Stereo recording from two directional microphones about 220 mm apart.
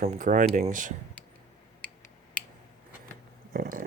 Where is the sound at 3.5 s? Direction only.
40° right (ahead or behind).